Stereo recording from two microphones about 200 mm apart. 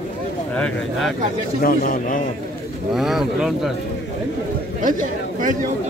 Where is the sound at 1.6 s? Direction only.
45° left (ahead or behind).